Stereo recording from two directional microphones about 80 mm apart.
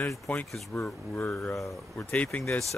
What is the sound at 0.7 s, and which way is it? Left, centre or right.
Speech, left.